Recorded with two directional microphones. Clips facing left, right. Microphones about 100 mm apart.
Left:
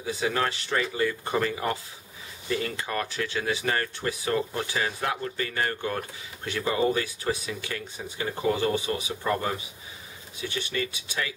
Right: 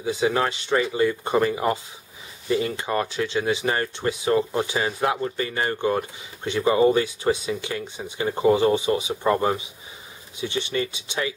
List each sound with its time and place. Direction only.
0.0 s speech: 20° right (ahead or behind)